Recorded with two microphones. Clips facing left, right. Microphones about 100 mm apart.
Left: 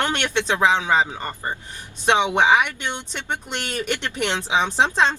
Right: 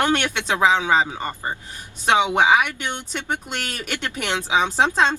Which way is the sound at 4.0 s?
10° right (ahead or behind).